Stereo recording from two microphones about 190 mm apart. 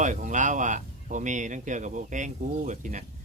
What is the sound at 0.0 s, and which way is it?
Speech, 40° right (ahead or behind).